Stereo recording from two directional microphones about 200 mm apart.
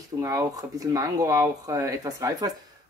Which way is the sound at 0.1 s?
15° right (ahead or behind).